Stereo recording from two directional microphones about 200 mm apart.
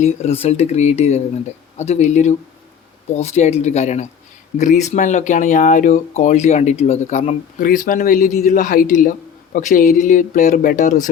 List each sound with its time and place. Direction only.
0.0 s speech: 30° left (ahead or behind)